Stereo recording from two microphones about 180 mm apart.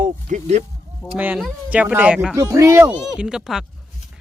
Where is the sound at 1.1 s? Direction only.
5° right (ahead or behind).